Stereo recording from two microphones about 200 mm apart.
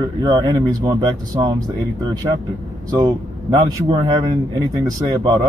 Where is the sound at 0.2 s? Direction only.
20° right (ahead or behind).